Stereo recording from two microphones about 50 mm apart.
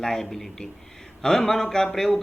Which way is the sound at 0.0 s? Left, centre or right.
Centre.